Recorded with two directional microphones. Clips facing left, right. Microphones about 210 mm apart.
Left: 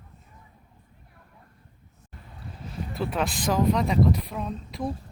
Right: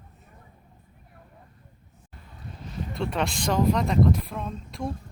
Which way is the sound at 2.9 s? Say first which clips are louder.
Even; 5° left (ahead or behind).